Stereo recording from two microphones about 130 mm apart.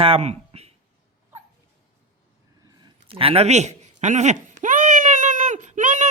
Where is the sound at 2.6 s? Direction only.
35° right (ahead or behind); by 6.1 s 75° right (ahead or behind).